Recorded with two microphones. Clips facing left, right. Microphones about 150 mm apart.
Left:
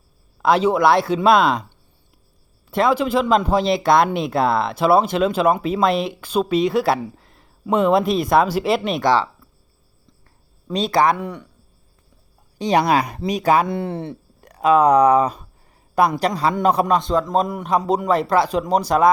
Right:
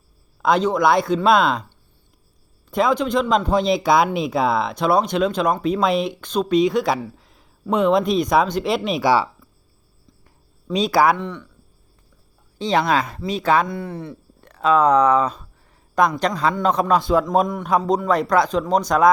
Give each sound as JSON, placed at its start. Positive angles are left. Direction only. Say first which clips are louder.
{"t": 0.4, "sound": "speech", "louder": "left 2 dB", "side_deg": 5}
{"t": 2.6, "sound": "speech", "louder": "left 1 dB", "side_deg": 0}
{"t": 10.7, "sound": "speech", "louder": "right 1 dB", "side_deg": 0}
{"t": 11.2, "sound": "speech", "louder": "even", "side_deg": 10}
{"t": 12.9, "sound": "speech", "louder": "left 2 dB", "side_deg": 15}
{"t": 13.7, "sound": "speech", "louder": "left 4 dB", "side_deg": 25}
{"t": 14.4, "sound": "speech", "louder": "left 2 dB", "side_deg": 10}
{"t": 16.9, "sound": "speech", "louder": "right 1 dB", "side_deg": -5}